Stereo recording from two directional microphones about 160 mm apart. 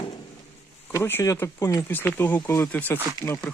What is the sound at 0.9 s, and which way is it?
Speech, 15° left (ahead or behind).